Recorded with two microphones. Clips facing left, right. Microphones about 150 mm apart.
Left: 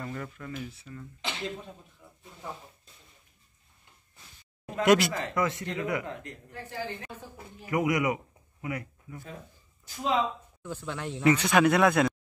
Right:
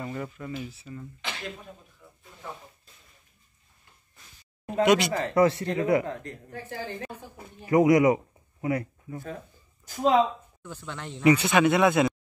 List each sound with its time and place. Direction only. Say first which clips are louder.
0.0 s speech: right 3 dB; 10° right (ahead or behind)
4.8 s speech: even; centre (ahead or behind)
5.1 s speech: right 7 dB; 30° right (ahead or behind)
7.7 s speech: right 8 dB; 35° right (ahead or behind)
10.6 s speech: left 4 dB; 10° left (ahead or behind)
11.2 s speech: right 2 dB; 5° right (ahead or behind)